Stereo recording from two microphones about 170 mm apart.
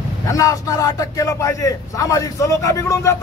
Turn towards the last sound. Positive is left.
turn(degrees=15)  # may be behind; listen again after turning